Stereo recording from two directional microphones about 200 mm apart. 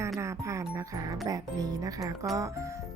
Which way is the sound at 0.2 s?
15° right (ahead or behind).